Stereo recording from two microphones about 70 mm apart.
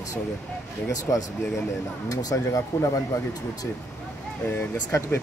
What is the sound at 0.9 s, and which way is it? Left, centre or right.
Speech, left.